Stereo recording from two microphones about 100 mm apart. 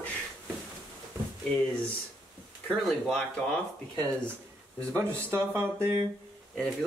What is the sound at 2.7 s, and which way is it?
Speech, 10° left (ahead or behind).